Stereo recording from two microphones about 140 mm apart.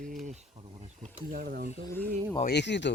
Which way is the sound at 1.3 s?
75° right (ahead or behind).